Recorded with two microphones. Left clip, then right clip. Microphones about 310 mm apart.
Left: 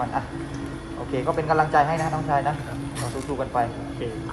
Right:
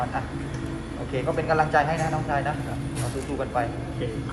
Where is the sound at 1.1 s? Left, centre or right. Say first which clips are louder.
Left 2 dB; left.